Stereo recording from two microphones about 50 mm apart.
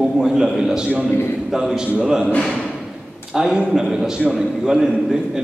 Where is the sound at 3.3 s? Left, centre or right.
Centre.